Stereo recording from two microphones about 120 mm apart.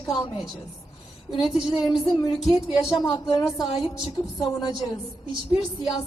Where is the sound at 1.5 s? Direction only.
5° right (ahead or behind).